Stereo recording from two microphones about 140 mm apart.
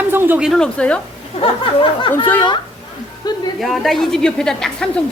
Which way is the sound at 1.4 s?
35° left (ahead or behind).